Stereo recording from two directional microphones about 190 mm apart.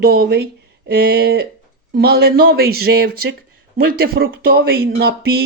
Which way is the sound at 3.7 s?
55° right (ahead or behind).